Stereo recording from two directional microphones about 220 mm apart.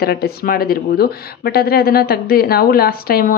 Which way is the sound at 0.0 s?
45° left (ahead or behind).